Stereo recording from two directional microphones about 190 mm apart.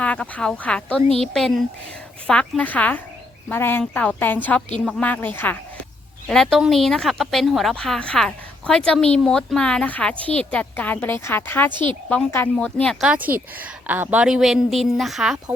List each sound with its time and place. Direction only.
0.0 s a woman's voice: 5° left (ahead or behind)
11.7 s a woman's voice: 25° right (ahead or behind)
12.0 s a woman's voice: 10° left (ahead or behind)